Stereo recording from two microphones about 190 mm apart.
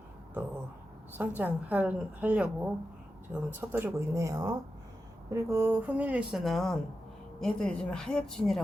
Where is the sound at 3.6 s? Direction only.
15° right (ahead or behind).